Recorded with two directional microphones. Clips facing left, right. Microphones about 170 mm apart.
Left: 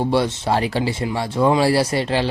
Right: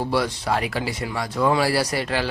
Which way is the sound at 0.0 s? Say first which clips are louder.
Left 4 dB; 25° left (ahead or behind).